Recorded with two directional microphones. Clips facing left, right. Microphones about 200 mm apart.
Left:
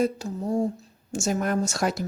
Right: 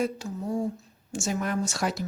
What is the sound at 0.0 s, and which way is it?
Speech, 40° left (ahead or behind).